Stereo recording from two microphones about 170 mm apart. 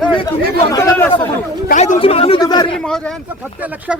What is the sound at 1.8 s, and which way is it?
Speech, 35° left (ahead or behind).